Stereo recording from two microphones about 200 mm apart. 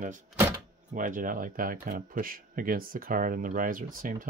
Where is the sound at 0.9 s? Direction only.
40° right (ahead or behind).